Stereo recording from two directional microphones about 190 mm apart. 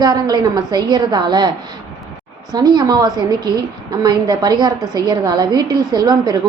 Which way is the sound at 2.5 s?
20° right (ahead or behind).